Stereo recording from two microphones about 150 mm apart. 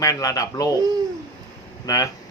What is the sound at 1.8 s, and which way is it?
Speech, 25° left (ahead or behind).